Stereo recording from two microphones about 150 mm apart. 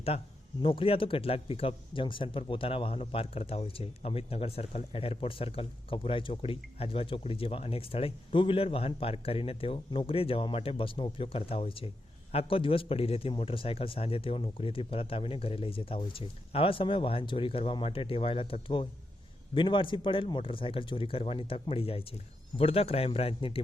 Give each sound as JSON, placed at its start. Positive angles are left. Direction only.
{"t": 0.6, "sound": "speech", "side_deg": 35}